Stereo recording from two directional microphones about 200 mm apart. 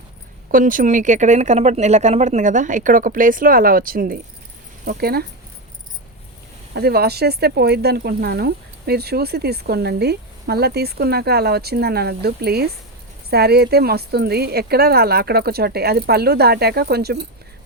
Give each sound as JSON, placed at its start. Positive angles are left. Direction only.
{"t": 0.5, "sound": "speech", "side_deg": -40}
{"t": 6.7, "sound": "speech", "side_deg": -50}